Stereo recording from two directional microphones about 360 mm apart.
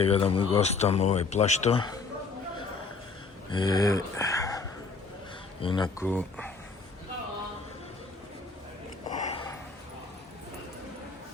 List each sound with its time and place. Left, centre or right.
0.0 s speech: centre
3.5 s speech: centre
9.0 s a sound: centre